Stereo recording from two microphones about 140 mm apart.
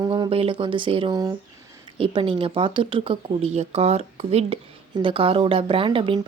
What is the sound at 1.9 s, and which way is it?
A woman's voice, 40° right (ahead or behind).